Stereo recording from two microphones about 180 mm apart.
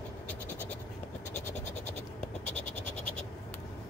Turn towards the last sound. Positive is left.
turn(degrees=5)  # may be behind; listen again after turning